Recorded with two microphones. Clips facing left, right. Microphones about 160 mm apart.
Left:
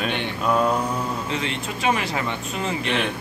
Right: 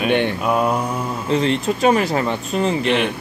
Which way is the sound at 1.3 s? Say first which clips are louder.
Right 9 dB; 35° right (ahead or behind).